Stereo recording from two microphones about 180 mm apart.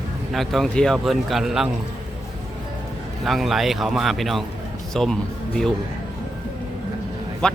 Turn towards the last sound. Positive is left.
turn(degrees=5)  # may be behind; listen again after turning